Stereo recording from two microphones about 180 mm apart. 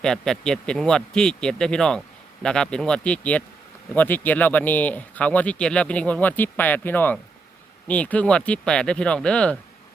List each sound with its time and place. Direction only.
0.0 s speech: 5° left (ahead or behind)